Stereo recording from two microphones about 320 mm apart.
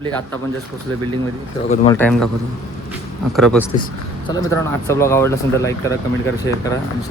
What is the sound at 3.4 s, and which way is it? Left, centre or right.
A man's voice, centre.